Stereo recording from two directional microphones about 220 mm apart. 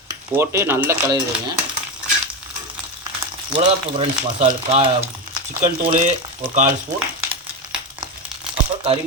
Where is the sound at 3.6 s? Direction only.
35° right (ahead or behind).